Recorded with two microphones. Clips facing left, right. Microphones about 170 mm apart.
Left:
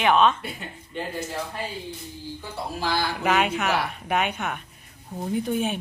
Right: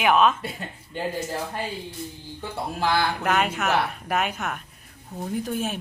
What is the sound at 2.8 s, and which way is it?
Speech, 55° right (ahead or behind).